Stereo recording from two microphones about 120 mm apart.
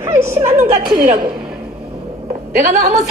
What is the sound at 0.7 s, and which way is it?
Speech, 55° right (ahead or behind).